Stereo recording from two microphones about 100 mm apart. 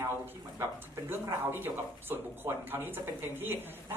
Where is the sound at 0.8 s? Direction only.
25° right (ahead or behind).